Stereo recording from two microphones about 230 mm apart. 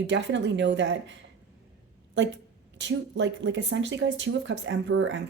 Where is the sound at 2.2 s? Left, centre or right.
Right.